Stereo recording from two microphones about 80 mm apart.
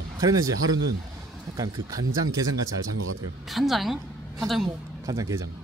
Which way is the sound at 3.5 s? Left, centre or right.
Centre.